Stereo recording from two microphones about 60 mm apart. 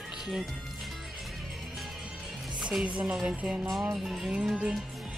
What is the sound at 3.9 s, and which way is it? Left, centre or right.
Speech, centre.